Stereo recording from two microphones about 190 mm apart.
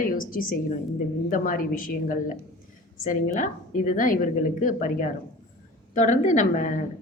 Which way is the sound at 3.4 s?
45° left (ahead or behind).